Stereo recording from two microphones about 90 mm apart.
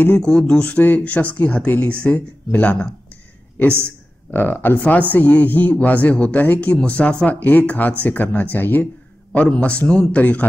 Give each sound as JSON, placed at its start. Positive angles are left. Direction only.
{"t": 0.2, "sound": "speech", "side_deg": 10}
{"t": 4.3, "sound": "speech", "side_deg": 20}